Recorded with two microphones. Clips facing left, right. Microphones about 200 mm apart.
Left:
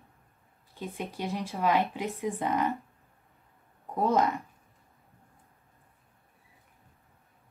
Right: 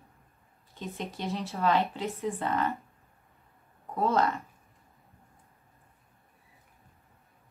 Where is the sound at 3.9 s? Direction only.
15° left (ahead or behind).